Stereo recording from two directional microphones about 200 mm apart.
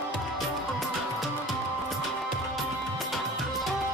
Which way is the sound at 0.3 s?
Centre (ahead or behind).